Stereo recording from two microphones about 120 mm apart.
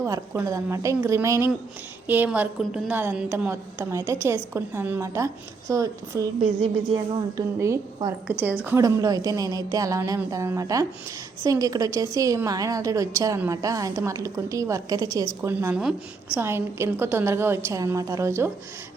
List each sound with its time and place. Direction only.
0.0 s a woman's voice: 25° right (ahead or behind)
2.6 s a woman's voice: centre (ahead or behind)
2.9 s a woman's voice: 15° right (ahead or behind); by 8.1 s 30° right (ahead or behind)
8.3 s a woman's voice: 15° right (ahead or behind)
8.8 s a woman's voice: 30° right (ahead or behind)
15.8 s a woman's voice: 5° right (ahead or behind)
16.4 s a woman's voice: 20° right (ahead or behind)